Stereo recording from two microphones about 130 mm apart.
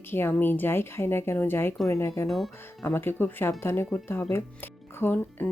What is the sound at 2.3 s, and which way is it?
Speech, centre (ahead or behind).